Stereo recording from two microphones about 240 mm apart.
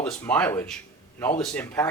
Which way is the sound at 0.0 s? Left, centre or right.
Centre.